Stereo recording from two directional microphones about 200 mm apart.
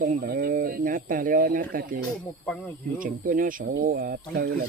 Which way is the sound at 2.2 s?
10° left (ahead or behind).